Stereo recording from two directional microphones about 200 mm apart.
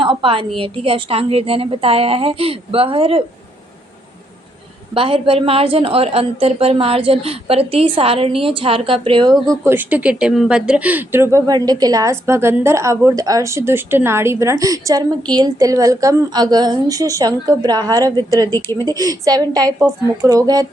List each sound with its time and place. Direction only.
0.0 s a woman's voice: 25° right (ahead or behind)
4.9 s a woman's voice: 25° right (ahead or behind)
9.5 s a woman's voice: 10° right (ahead or behind)